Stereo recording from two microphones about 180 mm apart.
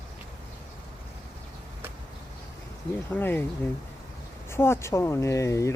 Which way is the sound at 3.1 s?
10° left (ahead or behind).